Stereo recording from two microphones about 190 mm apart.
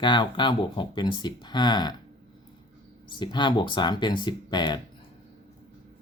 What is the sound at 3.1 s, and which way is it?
Speech, 25° left (ahead or behind).